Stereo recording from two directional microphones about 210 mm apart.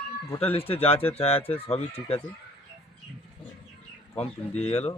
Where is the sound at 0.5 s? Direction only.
30° left (ahead or behind).